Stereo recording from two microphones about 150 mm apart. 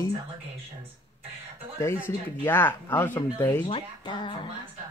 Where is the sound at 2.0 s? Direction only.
15° left (ahead or behind).